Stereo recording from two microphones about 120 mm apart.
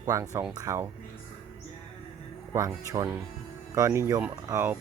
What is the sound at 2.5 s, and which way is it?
Speech, 25° right (ahead or behind).